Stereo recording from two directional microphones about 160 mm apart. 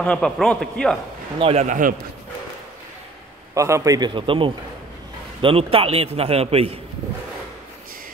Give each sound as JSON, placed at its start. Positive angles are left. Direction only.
{"t": 0.0, "sound": "speech", "side_deg": 5}
{"t": 1.4, "sound": "speech", "side_deg": -45}
{"t": 3.5, "sound": "a man's voice", "side_deg": -20}